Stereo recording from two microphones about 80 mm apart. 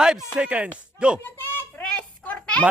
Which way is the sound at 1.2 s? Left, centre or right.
Left.